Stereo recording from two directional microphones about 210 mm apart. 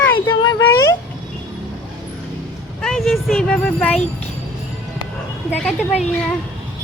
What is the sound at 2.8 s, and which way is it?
Speech, centre (ahead or behind).